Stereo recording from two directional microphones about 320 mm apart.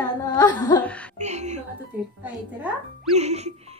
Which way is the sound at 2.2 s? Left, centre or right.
Centre.